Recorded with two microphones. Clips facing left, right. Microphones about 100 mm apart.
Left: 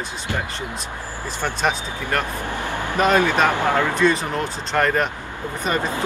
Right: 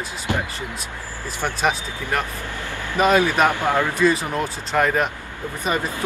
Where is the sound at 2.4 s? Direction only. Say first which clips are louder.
Left 5 dB; 20° left (ahead or behind).